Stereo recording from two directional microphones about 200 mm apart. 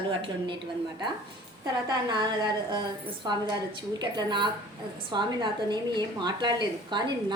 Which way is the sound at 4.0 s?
25° right (ahead or behind).